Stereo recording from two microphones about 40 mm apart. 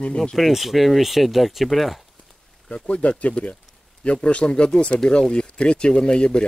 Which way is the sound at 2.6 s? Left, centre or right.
Left.